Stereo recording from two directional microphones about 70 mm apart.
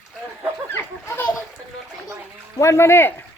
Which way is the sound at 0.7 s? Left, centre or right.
Left.